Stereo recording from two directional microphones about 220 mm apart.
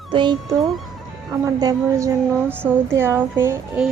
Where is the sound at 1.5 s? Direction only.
15° right (ahead or behind).